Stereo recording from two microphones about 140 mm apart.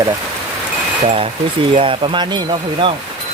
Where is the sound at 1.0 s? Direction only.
45° right (ahead or behind).